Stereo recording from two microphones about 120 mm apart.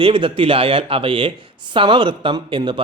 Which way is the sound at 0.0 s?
50° right (ahead or behind).